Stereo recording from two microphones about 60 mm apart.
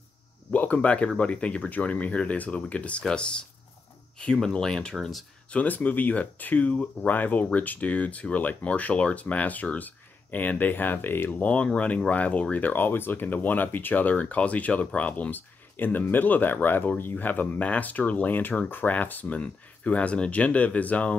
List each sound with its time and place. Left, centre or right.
0.5 s speech: left
5.5 s speech: left
11.3 s speech: left